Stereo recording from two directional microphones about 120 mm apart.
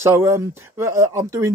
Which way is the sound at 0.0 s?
25° right (ahead or behind).